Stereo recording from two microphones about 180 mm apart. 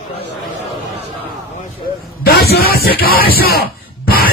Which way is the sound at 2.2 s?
60° left (ahead or behind).